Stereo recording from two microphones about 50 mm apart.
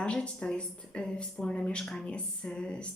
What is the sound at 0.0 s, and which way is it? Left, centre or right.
A woman's voice, left.